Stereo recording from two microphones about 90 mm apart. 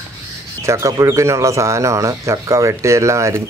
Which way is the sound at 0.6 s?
35° right (ahead or behind).